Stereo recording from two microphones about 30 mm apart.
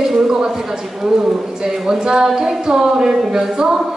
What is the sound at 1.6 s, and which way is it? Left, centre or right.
A woman's voice, centre.